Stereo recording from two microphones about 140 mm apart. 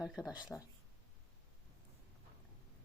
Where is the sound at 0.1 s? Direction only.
5° right (ahead or behind).